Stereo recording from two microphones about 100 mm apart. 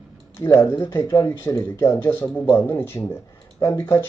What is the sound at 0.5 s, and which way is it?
Speech, 25° left (ahead or behind).